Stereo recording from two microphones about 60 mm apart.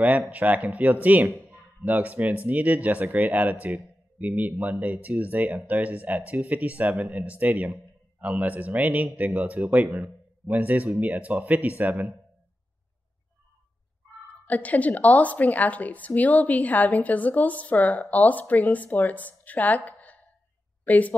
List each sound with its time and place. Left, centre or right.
0.3 s speech: right
14.5 s a woman's voice: left